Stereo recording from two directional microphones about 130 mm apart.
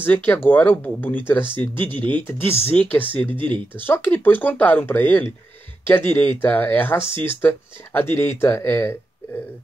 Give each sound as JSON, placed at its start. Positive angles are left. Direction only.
{"t": 0.0, "sound": "speech", "side_deg": 15}
{"t": 3.3, "sound": "speech", "side_deg": -40}
{"t": 3.7, "sound": "speech", "side_deg": 15}